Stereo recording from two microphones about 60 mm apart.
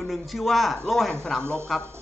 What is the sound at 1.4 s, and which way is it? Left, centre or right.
Speech, right.